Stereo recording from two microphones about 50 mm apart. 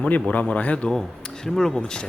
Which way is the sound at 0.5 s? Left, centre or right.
Left.